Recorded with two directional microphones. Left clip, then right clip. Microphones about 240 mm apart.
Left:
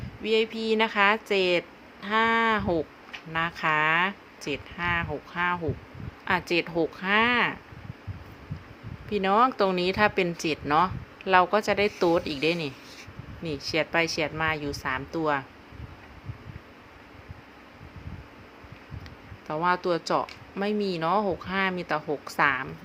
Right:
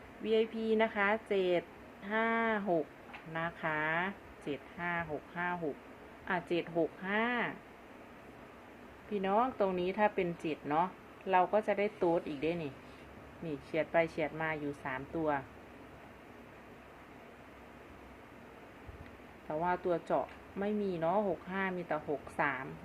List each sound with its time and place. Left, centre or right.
0.2 s speech: left
9.1 s speech: left
19.5 s speech: left